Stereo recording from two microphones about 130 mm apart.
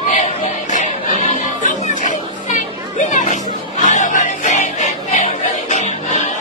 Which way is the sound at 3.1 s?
75° left (ahead or behind).